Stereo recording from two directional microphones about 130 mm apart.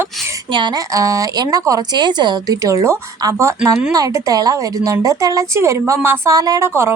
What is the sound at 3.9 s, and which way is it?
Speech, 30° right (ahead or behind).